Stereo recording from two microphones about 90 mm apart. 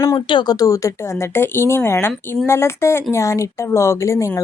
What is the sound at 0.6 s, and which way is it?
A woman's voice, 35° left (ahead or behind).